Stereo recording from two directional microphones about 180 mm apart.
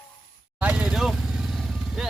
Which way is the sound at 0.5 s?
5° right (ahead or behind).